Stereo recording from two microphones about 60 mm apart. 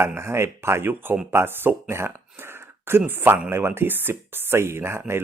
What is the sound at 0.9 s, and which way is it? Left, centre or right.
Speech, right.